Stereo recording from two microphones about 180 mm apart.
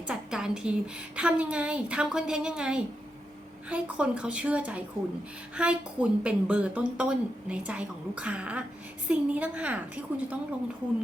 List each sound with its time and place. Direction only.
0.1 s a woman's voice: 5° right (ahead or behind)